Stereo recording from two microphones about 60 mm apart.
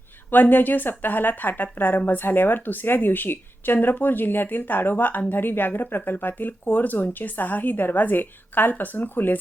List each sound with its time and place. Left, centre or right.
0.3 s speech: left